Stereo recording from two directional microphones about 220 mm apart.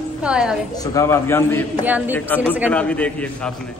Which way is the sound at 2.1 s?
10° left (ahead or behind).